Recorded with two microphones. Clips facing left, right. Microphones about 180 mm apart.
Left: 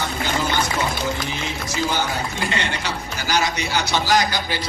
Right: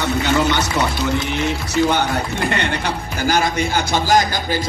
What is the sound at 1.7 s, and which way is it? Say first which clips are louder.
A man's voice: right 5 dB; 65° right (ahead or behind).